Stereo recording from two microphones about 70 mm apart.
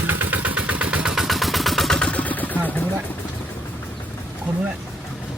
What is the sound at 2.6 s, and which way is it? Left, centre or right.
Speech, left.